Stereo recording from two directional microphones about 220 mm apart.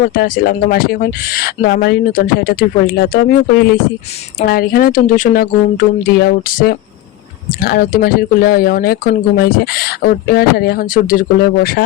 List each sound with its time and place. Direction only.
0.0 s speech: 40° left (ahead or behind)